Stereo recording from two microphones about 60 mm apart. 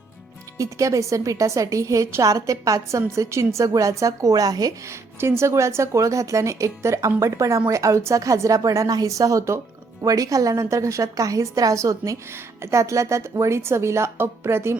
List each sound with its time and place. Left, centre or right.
0.5 s a woman's voice: right
4.9 s a woman's voice: right
10.0 s a woman's voice: right